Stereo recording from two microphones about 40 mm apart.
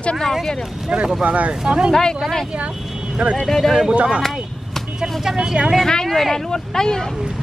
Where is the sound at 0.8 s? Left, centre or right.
Right.